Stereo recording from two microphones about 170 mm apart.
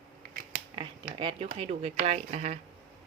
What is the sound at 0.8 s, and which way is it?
Speech, 30° right (ahead or behind).